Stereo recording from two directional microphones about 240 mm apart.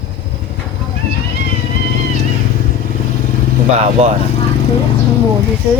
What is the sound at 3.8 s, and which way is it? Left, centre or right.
Speech, right.